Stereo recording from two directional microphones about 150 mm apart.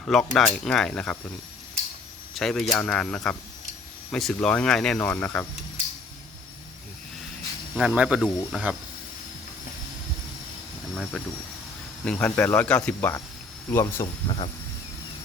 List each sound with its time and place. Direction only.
0.0 s speech: centre (ahead or behind)
2.3 s speech: centre (ahead or behind)
7.8 s speech: 5° right (ahead or behind)
10.9 s speech: 5° left (ahead or behind)
14.3 s speech: 40° left (ahead or behind)